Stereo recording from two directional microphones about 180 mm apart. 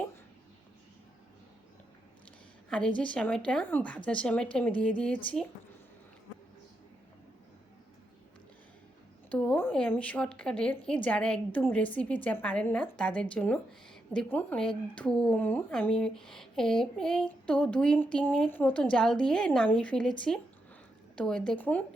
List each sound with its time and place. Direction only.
2.6 s a woman's voice: 5° left (ahead or behind)
9.3 s a woman's voice: 5° left (ahead or behind)
21.2 s a woman's voice: 5° left (ahead or behind)